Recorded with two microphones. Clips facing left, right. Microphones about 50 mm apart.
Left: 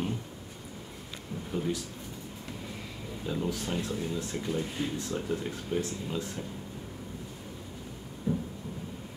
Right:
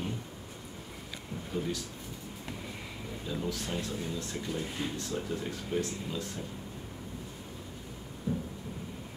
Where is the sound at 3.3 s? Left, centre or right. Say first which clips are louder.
Left 3 dB; centre.